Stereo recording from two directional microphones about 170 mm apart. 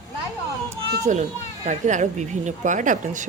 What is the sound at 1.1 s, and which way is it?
Speech, 45° right (ahead or behind).